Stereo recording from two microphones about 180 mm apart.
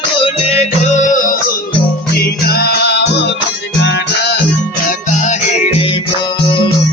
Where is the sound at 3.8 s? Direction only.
80° left.